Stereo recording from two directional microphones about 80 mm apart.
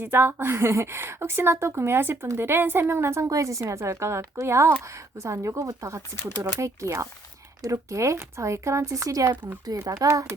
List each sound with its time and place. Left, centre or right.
0.0 s a woman's voice: right
3.2 s speech: right